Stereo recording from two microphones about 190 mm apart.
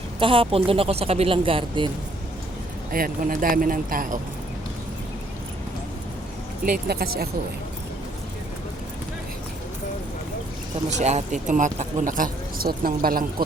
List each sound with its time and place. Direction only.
0.2 s speech: 30° right (ahead or behind)
2.9 s speech: 50° right (ahead or behind)
6.7 s speech: 55° right (ahead or behind)
10.9 s speech: 35° right (ahead or behind)